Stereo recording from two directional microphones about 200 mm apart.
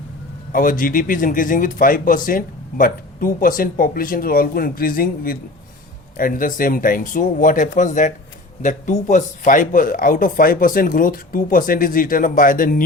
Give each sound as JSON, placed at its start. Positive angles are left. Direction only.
{"t": 0.5, "sound": "speech", "side_deg": 45}